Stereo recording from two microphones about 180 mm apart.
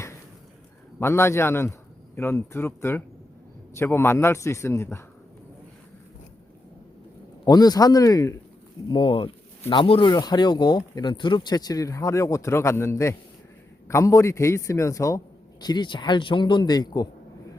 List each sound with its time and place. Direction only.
0.9 s a man's voice: 15° left (ahead or behind)
7.4 s a man's voice: 20° left (ahead or behind)